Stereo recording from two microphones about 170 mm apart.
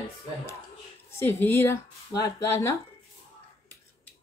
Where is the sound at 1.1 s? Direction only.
15° left (ahead or behind).